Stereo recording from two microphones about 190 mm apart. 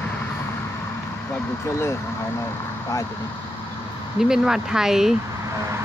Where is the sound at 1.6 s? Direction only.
15° left (ahead or behind).